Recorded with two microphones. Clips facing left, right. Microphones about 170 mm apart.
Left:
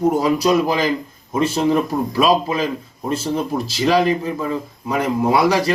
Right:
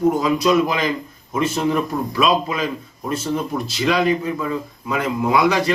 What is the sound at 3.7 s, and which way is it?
Speech, 35° left (ahead or behind).